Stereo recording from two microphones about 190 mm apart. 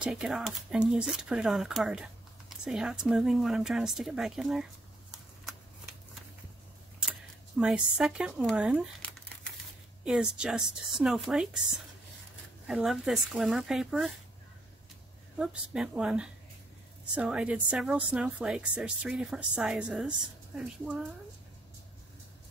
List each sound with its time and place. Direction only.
0.0 s speech: 5° right (ahead or behind)
7.0 s speech: 5° right (ahead or behind)
10.0 s speech: 5° right (ahead or behind)
12.6 s speech: centre (ahead or behind)
15.3 s speech: 5° right (ahead or behind)